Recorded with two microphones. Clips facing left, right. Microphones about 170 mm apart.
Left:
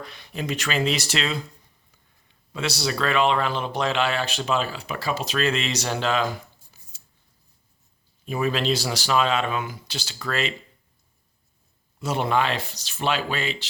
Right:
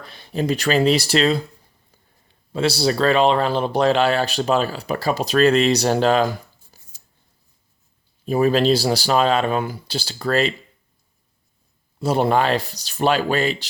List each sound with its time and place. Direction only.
0.0 s speech: 30° right (ahead or behind)
8.2 s speech: 35° right (ahead or behind)
11.9 s speech: 35° right (ahead or behind)